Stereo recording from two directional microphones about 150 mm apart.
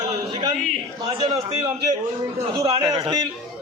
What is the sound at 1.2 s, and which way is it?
A man's voice, 30° right (ahead or behind).